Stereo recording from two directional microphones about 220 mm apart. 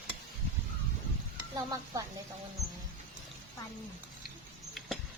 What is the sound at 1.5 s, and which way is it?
Stir, 15° right (ahead or behind).